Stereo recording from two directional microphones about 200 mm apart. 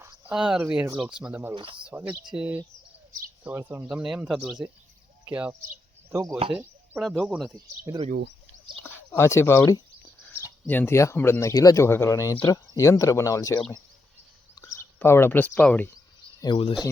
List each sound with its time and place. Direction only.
0.0 s speech: 5° right (ahead or behind)
1.5 s speech: 25° right (ahead or behind)
1.8 s speech: 10° right (ahead or behind)
7.5 s speech: 15° right (ahead or behind)
9.0 s speech: 15° left (ahead or behind)
16.4 s speech: 25° left (ahead or behind)